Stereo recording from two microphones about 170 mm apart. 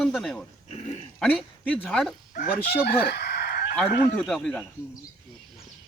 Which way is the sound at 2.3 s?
65° left (ahead or behind).